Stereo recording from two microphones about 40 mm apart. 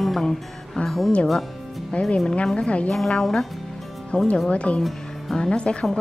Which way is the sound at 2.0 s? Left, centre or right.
Centre.